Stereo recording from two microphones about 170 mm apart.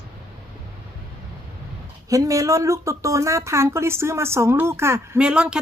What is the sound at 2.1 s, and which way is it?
Speech, 20° right (ahead or behind).